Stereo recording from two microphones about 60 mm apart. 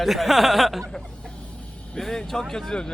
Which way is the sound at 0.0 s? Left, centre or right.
Centre.